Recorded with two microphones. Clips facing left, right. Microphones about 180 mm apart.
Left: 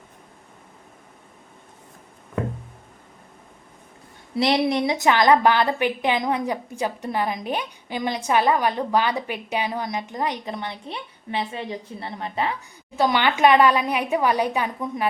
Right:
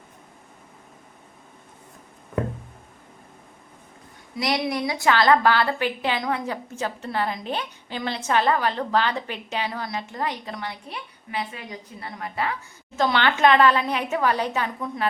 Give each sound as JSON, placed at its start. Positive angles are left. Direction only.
{"t": 4.4, "sound": "a woman's voice", "side_deg": 25}
{"t": 13.0, "sound": "a woman's voice", "side_deg": 15}